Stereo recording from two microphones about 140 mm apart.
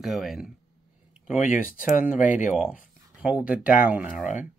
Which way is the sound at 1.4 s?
65° left (ahead or behind).